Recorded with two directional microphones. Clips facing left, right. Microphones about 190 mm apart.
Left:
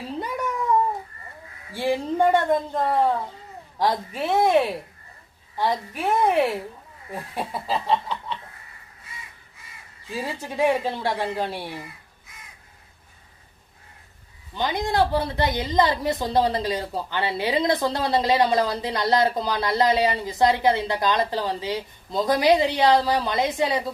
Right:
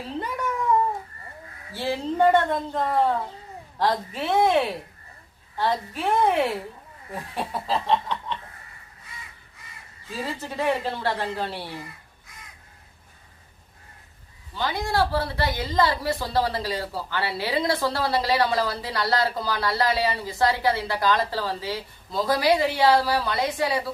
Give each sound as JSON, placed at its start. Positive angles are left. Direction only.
{"t": 1.7, "sound": "speech", "side_deg": 10}
{"t": 7.3, "sound": "snicker", "side_deg": 10}
{"t": 10.1, "sound": "speech", "side_deg": 10}
{"t": 14.5, "sound": "a woman's voice", "side_deg": 20}